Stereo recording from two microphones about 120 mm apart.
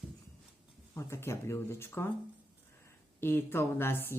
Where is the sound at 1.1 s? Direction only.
20° left (ahead or behind).